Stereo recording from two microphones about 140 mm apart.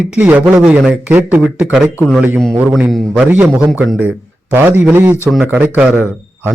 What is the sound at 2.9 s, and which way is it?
A man's voice, 10° right (ahead or behind).